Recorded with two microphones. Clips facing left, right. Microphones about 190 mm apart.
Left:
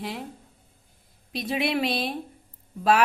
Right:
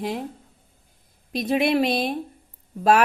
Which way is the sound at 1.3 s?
45° right (ahead or behind).